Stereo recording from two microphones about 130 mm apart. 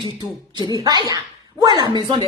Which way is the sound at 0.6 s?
30° right (ahead or behind).